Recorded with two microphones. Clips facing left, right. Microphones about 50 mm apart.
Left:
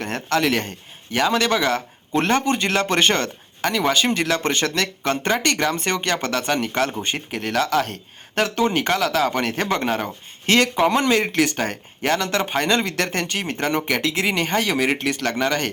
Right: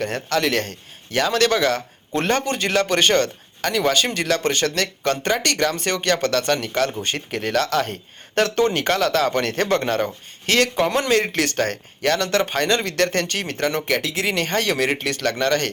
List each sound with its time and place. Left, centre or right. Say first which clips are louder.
0.0 s speech: even; left
7.3 s speech: right 2 dB; centre
7.5 s speech: left 1 dB; centre
10.4 s speech: left 1 dB; left
10.8 s speech: left 1 dB; centre
14.0 s speech: left 1 dB; left; by 15.7 s centre